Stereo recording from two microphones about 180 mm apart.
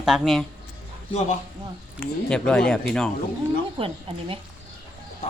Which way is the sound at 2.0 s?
5° left (ahead or behind).